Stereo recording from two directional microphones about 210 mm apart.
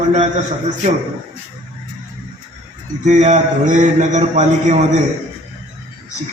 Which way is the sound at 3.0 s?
35° right (ahead or behind).